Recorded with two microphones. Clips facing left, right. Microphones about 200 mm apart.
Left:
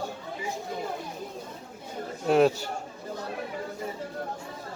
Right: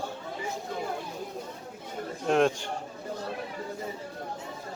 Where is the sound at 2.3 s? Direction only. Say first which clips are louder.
Left 3 dB; 5° left (ahead or behind).